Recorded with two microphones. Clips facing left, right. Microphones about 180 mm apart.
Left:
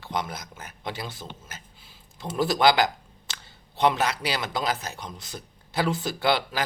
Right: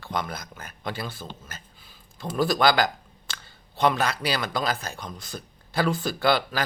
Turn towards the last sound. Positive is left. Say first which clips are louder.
# right 1 dB
turn(degrees=20)  # may be behind; listen again after turning